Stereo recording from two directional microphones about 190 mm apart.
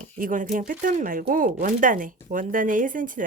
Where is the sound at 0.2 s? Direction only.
45° right (ahead or behind).